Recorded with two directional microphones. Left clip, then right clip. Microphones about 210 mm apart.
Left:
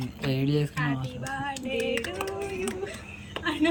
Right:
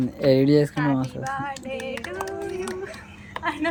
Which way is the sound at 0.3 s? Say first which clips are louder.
Right 11 dB; 30° right (ahead or behind).